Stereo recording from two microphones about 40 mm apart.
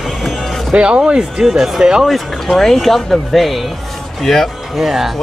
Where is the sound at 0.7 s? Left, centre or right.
Right.